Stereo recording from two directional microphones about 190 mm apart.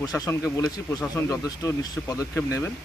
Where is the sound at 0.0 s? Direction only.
20° left (ahead or behind).